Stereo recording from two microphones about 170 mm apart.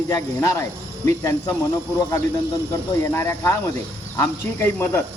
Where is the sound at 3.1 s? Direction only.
15° left (ahead or behind).